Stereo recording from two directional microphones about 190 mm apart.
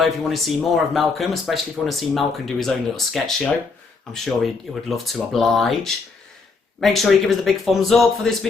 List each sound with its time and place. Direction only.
0.0 s speech: centre (ahead or behind)